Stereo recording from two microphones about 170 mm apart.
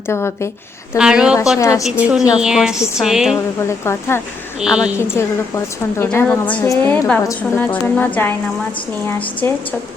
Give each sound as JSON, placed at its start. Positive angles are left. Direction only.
{"t": 0.1, "sound": "a woman's voice", "side_deg": 15}
{"t": 0.9, "sound": "a woman's voice", "side_deg": -5}
{"t": 1.5, "sound": "a woman's voice", "side_deg": 20}
{"t": 1.8, "sound": "a woman's voice", "side_deg": -5}
{"t": 3.7, "sound": "a woman's voice", "side_deg": 15}
{"t": 4.6, "sound": "a woman's voice", "side_deg": -5}
{"t": 4.9, "sound": "a woman's voice", "side_deg": 15}